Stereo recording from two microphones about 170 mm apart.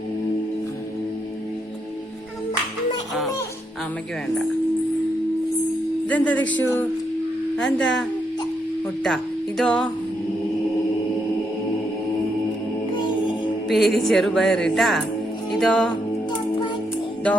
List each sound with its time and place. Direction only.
6.1 s speech: 10° left (ahead or behind)
6.3 s speech: 90° left
6.6 s speech: 10° left (ahead or behind)
9.0 s music: centre (ahead or behind)
13.7 s speech: centre (ahead or behind)